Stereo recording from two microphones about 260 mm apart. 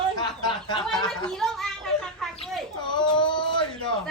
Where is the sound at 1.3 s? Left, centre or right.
Centre.